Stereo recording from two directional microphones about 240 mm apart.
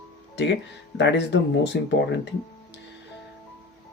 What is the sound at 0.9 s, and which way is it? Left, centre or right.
Speech, left.